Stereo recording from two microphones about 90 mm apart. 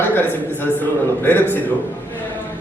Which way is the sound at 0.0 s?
25° left (ahead or behind).